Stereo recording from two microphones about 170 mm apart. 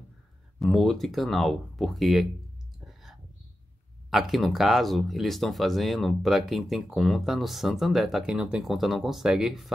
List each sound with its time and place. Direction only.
0.6 s speech: centre (ahead or behind)
2.9 s whispering: centre (ahead or behind)
4.1 s speech: centre (ahead or behind)